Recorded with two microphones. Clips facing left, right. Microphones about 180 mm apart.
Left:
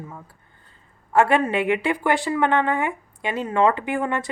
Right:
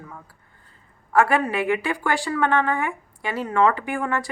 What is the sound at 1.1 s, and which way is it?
Speech, 25° left (ahead or behind).